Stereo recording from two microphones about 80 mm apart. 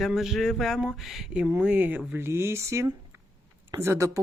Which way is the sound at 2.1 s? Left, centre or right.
Right.